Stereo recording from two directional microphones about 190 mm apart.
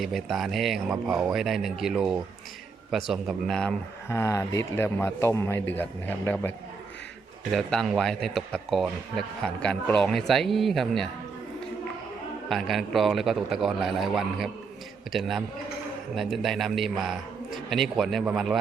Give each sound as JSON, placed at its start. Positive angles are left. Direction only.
{"t": 0.0, "sound": "speech", "side_deg": 0}
{"t": 7.5, "sound": "speech", "side_deg": 0}
{"t": 12.5, "sound": "speech", "side_deg": 0}